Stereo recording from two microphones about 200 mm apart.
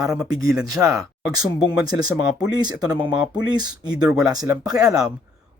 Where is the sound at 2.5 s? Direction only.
20° right (ahead or behind).